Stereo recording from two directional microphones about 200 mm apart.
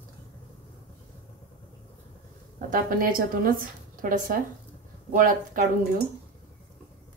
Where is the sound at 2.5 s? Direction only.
45° right (ahead or behind).